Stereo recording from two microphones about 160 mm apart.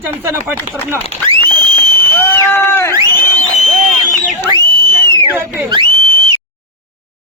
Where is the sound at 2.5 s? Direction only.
15° left (ahead or behind).